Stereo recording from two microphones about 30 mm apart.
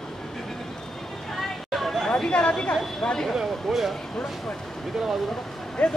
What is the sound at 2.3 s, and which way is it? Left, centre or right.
Speech, left.